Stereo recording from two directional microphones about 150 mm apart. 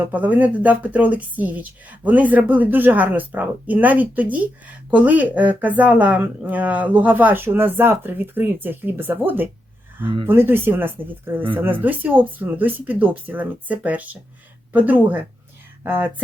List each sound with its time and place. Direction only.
0.0 s speech: 10° right (ahead or behind)